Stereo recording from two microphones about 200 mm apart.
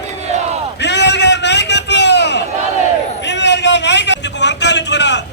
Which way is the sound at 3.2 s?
60° left (ahead or behind).